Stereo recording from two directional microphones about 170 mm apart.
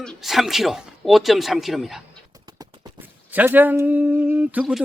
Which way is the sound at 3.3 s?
10° right (ahead or behind).